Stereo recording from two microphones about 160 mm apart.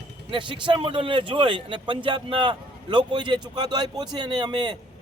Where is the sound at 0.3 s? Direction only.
30° right (ahead or behind).